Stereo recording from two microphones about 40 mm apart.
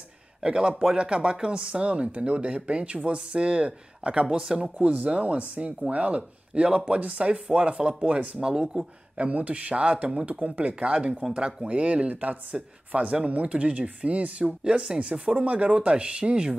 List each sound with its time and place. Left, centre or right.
0.4 s speech: right
9.2 s speech: right